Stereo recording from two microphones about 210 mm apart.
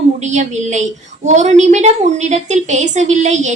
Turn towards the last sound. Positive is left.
turn(degrees=-35)  # may be behind; listen again after turning